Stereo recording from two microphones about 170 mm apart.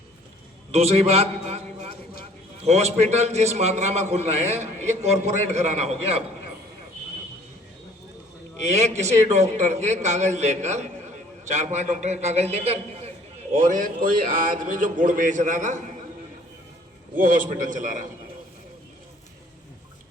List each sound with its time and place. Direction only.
0.7 s a man's voice: 35° right (ahead or behind)
8.6 s a man's voice: 40° right (ahead or behind)
13.5 s a man's voice: 50° right (ahead or behind)
17.2 s a man's voice: 55° right (ahead or behind)